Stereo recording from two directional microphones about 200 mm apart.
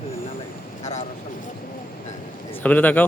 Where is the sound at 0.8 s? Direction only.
35° left (ahead or behind).